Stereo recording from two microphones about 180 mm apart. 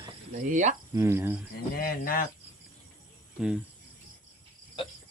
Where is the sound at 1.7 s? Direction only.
55° left (ahead or behind).